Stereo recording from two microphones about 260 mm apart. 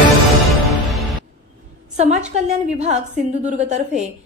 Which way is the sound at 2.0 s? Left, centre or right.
Right.